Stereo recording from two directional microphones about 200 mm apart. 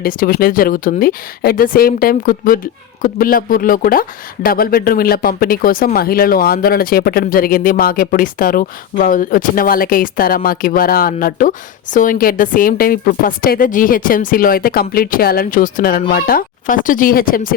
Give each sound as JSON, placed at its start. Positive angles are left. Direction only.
{"t": 0.0, "sound": "speech", "side_deg": 45}